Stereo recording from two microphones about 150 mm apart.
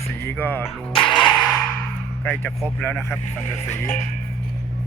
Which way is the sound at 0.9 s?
35° left (ahead or behind).